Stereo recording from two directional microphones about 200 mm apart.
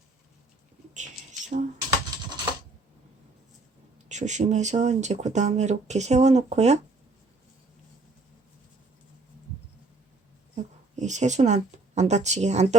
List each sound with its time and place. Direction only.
0.9 s rodents: 35° right (ahead or behind)
2.0 s typing: 20° right (ahead or behind)
3.9 s speech: 35° right (ahead or behind)
10.5 s a sound: 35° right (ahead or behind)